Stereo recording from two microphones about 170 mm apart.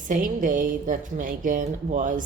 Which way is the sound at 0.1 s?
50° right (ahead or behind).